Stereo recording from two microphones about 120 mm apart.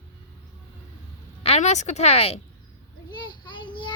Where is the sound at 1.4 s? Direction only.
65° left (ahead or behind).